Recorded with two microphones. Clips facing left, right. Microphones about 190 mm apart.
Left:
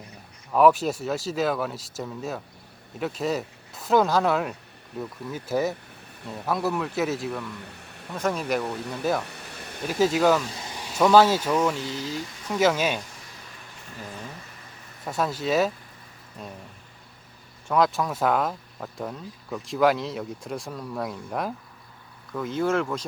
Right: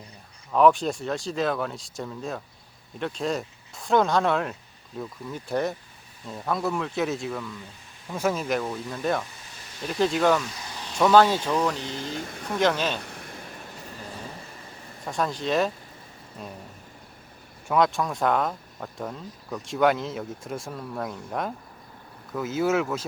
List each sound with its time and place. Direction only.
0.5 s speech: 5° left (ahead or behind)
7.5 s a sound: 65° left (ahead or behind)
8.1 s speech: 5° right (ahead or behind)
8.7 s speech: 70° left (ahead or behind)
9.2 s a sound: 65° left (ahead or behind)
9.8 s speech: 5° left (ahead or behind)
11.9 s speech: 50° right (ahead or behind)
12.5 s speech: 5° left (ahead or behind)
13.0 s vehicle: 60° right (ahead or behind)
15.0 s speech: 5° left (ahead or behind)
17.7 s speech: centre (ahead or behind)